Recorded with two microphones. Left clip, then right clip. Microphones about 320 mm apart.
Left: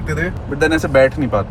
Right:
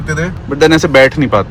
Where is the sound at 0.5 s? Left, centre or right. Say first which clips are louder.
Right 6 dB; right.